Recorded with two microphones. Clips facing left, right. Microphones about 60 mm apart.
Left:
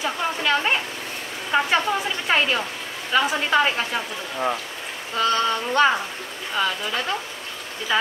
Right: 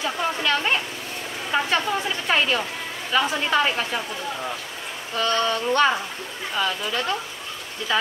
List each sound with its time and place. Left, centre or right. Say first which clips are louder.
0.0 s a sound: even; centre
1.5 s speech: left 2 dB; centre
5.1 s a woman's voice: left 1 dB; centre